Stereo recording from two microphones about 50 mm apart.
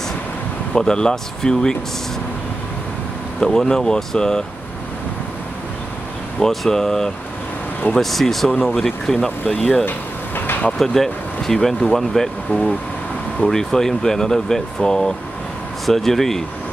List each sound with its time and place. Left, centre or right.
0.7 s speech: centre
3.3 s speech: centre
6.4 s speech: centre
9.8 s vehicle: left
10.8 s speech: centre
12.4 s speech: left
13.5 s speech: centre